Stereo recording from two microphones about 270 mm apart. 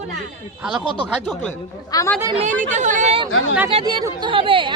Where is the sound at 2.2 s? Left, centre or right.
Centre.